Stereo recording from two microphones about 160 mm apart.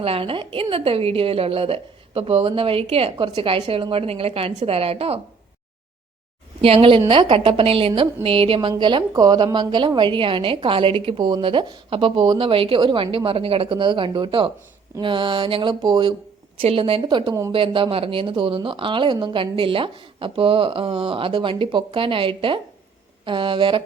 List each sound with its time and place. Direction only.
0.0 s a woman's voice: 35° right (ahead or behind)
6.6 s a woman's voice: 35° right (ahead or behind)